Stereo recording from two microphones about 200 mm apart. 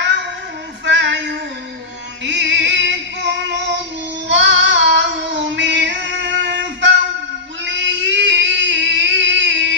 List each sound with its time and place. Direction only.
0.8 s female singing: 65° right (ahead or behind)
2.2 s music: 65° right (ahead or behind)
4.3 s child singing: 65° right (ahead or behind)
7.6 s a sound: 65° right (ahead or behind)